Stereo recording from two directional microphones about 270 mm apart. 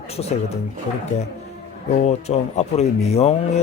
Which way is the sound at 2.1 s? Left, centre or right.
Left.